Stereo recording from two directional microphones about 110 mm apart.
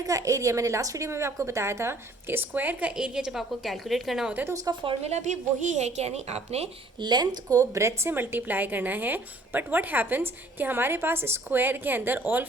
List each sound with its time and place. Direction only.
0.0 s a woman's voice: 30° right (ahead or behind); by 4.4 s 5° right (ahead or behind)
4.7 s speech: 35° right (ahead or behind)
5.0 s a woman's voice: 90° right; by 6.7 s 75° right (ahead or behind)
7.0 s speech: 40° right (ahead or behind)
7.6 s a woman's voice: 25° right (ahead or behind)